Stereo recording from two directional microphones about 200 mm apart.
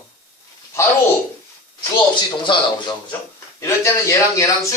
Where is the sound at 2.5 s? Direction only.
25° left (ahead or behind).